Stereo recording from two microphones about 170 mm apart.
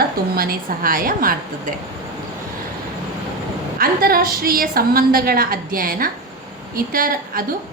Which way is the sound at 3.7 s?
60° right (ahead or behind).